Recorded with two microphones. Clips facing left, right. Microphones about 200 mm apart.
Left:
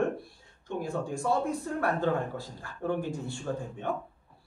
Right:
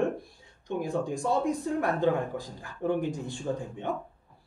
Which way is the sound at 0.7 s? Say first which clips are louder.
Right 3 dB; 15° right (ahead or behind).